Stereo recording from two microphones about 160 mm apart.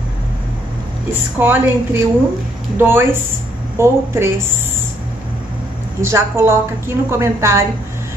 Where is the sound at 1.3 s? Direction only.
15° right (ahead or behind).